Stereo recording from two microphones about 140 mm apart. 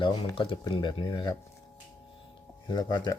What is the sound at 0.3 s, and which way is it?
Speech, 35° left (ahead or behind).